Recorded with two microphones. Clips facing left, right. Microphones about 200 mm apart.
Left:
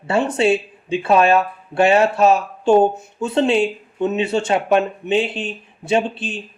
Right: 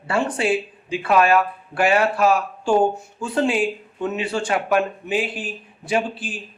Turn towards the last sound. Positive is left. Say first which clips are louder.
# left 4 dB
turn(degrees=25)  # may be behind; listen again after turning